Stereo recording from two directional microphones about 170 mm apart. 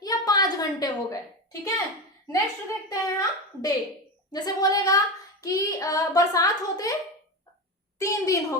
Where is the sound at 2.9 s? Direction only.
20° left (ahead or behind).